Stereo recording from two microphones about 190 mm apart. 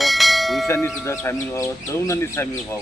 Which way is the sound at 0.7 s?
15° left (ahead or behind).